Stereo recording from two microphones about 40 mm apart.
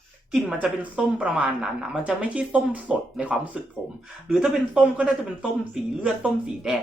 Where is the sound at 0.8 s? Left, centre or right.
Right.